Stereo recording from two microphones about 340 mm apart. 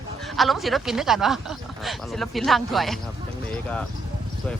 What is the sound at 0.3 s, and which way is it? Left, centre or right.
Speech, centre.